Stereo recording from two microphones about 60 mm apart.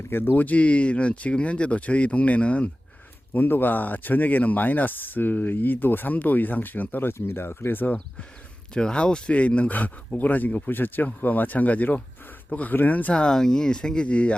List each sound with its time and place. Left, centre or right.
0.1 s speech: left
7.1 s speech: left
8.7 s speech: centre